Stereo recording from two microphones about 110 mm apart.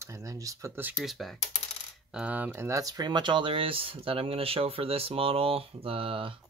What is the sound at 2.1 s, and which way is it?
Speech, 15° right (ahead or behind).